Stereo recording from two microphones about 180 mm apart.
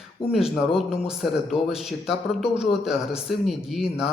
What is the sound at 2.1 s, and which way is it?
Speech, 35° left (ahead or behind).